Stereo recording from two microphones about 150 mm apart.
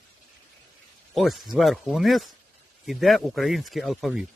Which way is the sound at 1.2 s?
Centre (ahead or behind).